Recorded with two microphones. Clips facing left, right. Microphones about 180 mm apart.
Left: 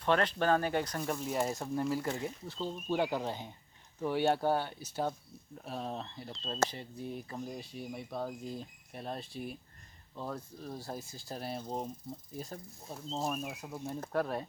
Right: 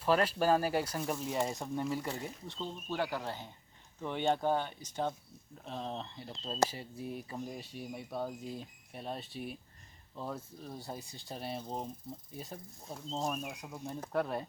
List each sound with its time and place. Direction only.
0.0 s speech: 5° right (ahead or behind)